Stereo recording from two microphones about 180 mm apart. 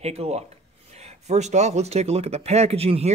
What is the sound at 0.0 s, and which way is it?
Speech, 35° right (ahead or behind).